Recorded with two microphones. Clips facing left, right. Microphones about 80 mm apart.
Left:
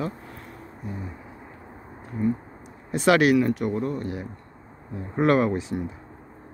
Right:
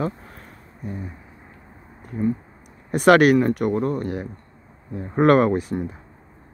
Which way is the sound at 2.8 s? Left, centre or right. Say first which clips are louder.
Right 5 dB; right.